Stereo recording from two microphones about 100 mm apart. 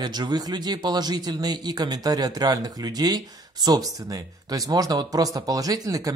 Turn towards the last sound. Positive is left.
turn(degrees=-35)  # may be behind; listen again after turning